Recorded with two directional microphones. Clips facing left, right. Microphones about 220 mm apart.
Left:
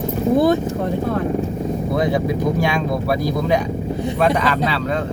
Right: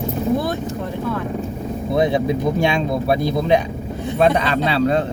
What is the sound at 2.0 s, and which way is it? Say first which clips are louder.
Speech: right 3 dB; 25° right (ahead or behind).